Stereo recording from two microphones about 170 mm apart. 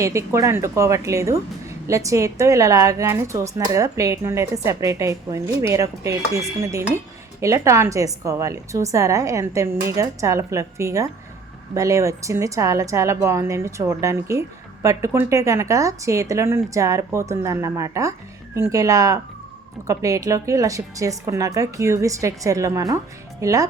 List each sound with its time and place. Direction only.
0.0 s a woman's voice: 15° right (ahead or behind)